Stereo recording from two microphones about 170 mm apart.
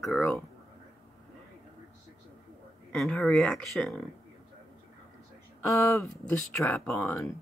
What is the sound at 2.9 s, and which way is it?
Speech, 5° left (ahead or behind).